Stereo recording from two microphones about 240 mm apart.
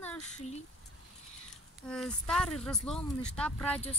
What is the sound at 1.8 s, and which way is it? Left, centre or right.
Speech, centre.